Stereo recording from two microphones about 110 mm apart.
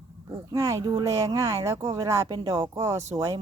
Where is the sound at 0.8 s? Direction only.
40° right (ahead or behind).